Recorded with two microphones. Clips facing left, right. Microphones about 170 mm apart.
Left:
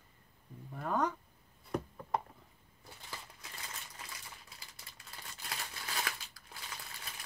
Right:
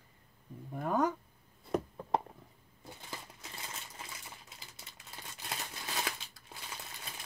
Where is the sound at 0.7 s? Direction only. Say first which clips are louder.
Right 3 dB; 10° right (ahead or behind).